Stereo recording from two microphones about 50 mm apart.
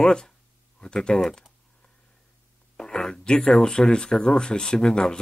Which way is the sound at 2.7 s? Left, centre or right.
Centre.